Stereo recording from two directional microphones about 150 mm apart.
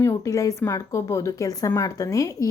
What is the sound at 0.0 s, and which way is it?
A woman's voice, 20° left (ahead or behind).